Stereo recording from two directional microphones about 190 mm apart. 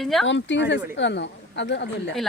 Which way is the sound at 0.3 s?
70° left (ahead or behind).